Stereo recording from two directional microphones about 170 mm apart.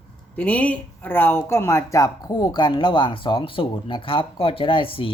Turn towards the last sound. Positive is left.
turn(degrees=30)  # may be behind; listen again after turning